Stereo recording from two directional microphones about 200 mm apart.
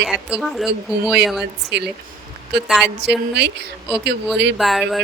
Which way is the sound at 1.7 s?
60° right (ahead or behind).